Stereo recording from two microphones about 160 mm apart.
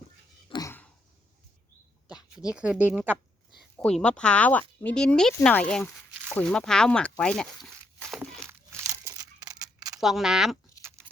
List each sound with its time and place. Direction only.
0.5 s a sound: 35° left (ahead or behind)
2.5 s speech: 5° right (ahead or behind)
3.6 s speech: centre (ahead or behind)
6.3 s a sound: 5° left (ahead or behind)
8.4 s crumpling: 15° right (ahead or behind)
10.0 s speech: centre (ahead or behind)